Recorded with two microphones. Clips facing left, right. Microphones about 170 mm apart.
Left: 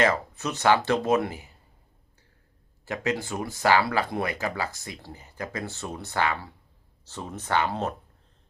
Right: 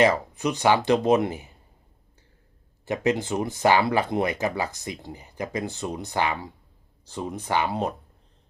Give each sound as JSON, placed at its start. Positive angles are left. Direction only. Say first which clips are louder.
{"t": 0.0, "sound": "speech", "louder": "right 3 dB", "side_deg": -15}
{"t": 2.8, "sound": "speech", "louder": "right 4 dB", "side_deg": -20}